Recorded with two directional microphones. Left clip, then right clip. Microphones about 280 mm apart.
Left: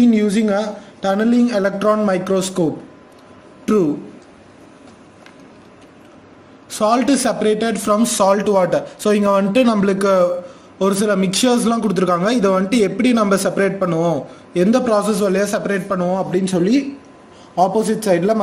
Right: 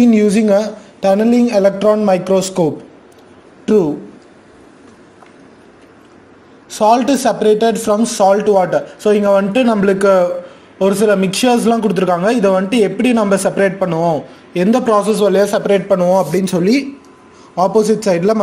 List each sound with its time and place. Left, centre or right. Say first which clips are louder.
0.0 s a woman's voice: right 4 dB; right
6.7 s a man's voice: right 4 dB; centre